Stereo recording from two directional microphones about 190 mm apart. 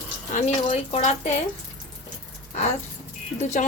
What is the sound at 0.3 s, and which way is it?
Speech, 35° left (ahead or behind).